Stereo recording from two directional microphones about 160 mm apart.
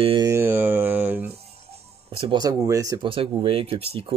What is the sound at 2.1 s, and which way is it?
Speech, 35° right (ahead or behind).